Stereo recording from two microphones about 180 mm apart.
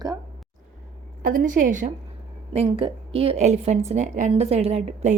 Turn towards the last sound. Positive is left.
turn(degrees=-35)  # may be behind; listen again after turning